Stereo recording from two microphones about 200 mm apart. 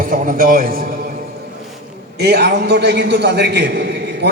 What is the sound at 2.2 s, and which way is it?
A man's voice, 55° right (ahead or behind).